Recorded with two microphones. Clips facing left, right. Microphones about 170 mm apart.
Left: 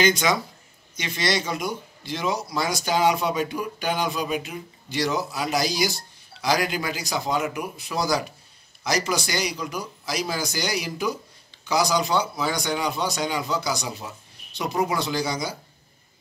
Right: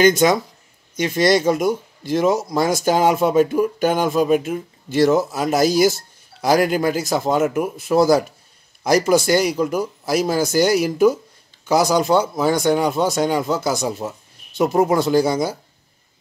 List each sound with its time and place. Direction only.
0.0 s speech: 50° right (ahead or behind)